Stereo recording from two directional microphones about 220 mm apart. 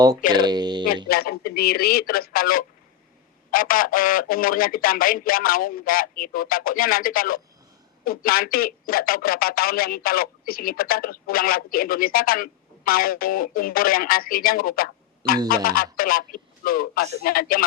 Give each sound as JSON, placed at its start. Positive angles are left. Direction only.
{"t": 0.2, "sound": "speech", "side_deg": 40}
{"t": 0.4, "sound": "speech", "side_deg": -20}
{"t": 1.0, "sound": "speech", "side_deg": 45}